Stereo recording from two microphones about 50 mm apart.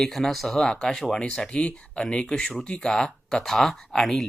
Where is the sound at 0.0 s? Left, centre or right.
Centre.